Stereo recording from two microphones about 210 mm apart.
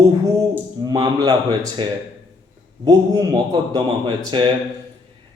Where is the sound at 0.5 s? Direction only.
20° right (ahead or behind).